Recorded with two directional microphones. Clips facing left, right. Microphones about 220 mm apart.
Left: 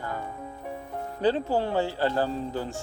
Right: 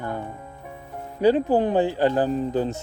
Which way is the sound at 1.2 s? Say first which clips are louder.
Right 6 dB; 15° right (ahead or behind).